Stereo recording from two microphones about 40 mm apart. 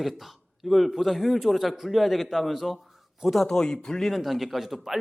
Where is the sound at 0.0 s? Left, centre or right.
Centre.